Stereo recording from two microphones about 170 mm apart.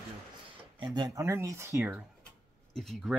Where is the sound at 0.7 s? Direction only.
25° right (ahead or behind).